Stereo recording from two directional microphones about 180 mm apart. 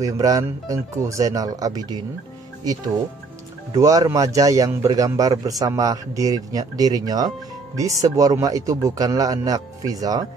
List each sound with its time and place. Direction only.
0.0 s a man's voice: 20° right (ahead or behind)
3.7 s a man's voice: 20° right (ahead or behind)